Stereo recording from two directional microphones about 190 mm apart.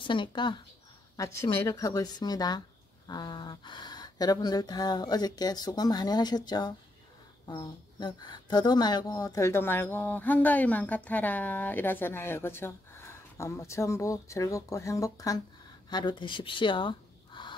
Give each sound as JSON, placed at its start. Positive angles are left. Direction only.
{"t": 0.0, "sound": "speech", "side_deg": 25}